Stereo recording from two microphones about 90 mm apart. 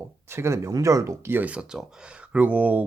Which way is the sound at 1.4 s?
15° right (ahead or behind).